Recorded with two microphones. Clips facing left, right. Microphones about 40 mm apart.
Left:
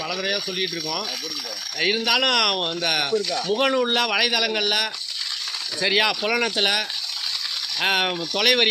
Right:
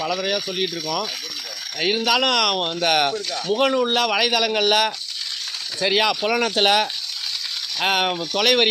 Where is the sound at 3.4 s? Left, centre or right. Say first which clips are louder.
Right 5 dB; centre.